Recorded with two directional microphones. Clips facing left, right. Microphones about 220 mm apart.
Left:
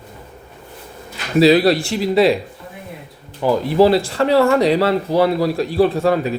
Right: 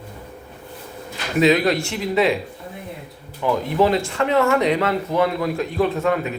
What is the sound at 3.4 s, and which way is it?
Speech, 35° left (ahead or behind).